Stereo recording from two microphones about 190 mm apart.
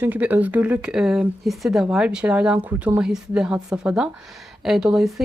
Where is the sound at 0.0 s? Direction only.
10° right (ahead or behind).